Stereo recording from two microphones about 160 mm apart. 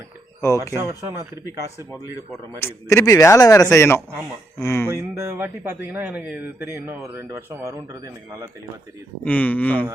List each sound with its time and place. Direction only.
0.4 s speech: 20° left (ahead or behind)
0.8 s speech: 15° right (ahead or behind)
2.6 s speech: 20° left (ahead or behind)
4.9 s speech: 15° right (ahead or behind)
9.2 s speech: 10° left (ahead or behind)